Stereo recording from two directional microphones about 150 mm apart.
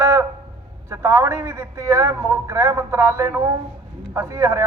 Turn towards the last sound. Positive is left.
turn(degrees=-20)  # may be behind; listen again after turning